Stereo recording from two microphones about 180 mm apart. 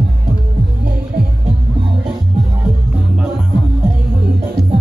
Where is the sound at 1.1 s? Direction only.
60° right (ahead or behind).